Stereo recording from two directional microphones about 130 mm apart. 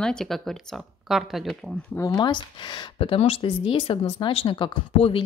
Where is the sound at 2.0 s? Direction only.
30° left (ahead or behind).